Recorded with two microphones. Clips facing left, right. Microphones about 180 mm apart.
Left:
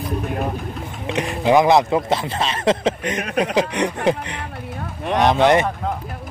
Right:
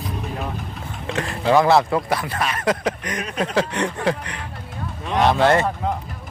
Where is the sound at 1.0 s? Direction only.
20° left (ahead or behind).